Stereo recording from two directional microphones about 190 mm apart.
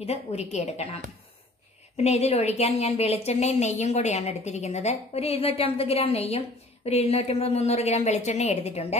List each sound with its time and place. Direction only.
0.0 s a woman's voice: 35° left (ahead or behind)